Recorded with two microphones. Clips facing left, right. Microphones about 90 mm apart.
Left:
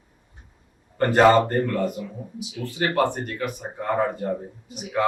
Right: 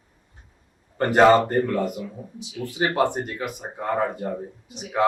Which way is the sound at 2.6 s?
15° right (ahead or behind).